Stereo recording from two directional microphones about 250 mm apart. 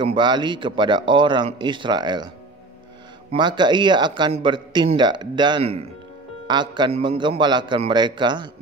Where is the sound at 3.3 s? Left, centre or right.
Centre.